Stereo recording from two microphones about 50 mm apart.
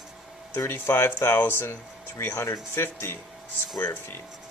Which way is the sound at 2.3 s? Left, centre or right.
Left.